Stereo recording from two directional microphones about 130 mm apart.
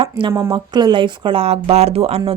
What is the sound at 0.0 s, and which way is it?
Speech, 40° right (ahead or behind).